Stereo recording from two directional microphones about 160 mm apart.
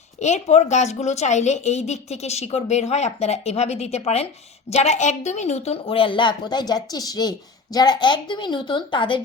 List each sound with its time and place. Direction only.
0.2 s a woman's voice: 45° left (ahead or behind); by 9.2 s 30° left (ahead or behind)